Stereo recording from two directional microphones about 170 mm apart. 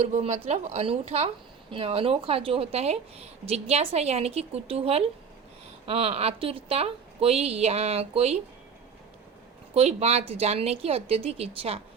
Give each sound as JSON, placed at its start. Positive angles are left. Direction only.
{"t": 0.0, "sound": "a woman's voice", "side_deg": -35}
{"t": 9.7, "sound": "a woman's voice", "side_deg": -40}